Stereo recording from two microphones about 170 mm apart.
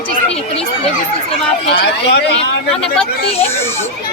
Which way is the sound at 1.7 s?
80° left.